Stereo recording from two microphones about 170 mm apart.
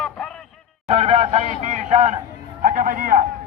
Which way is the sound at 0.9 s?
35° right (ahead or behind).